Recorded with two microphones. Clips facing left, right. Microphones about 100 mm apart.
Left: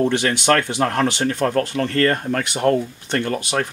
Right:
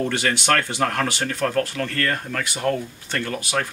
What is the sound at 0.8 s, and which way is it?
Speech, 25° left (ahead or behind).